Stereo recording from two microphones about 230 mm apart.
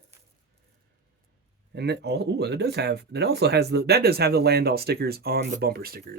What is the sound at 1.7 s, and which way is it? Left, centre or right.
Speech, right.